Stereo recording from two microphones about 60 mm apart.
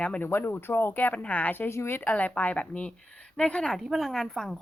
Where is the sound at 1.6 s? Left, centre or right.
Left.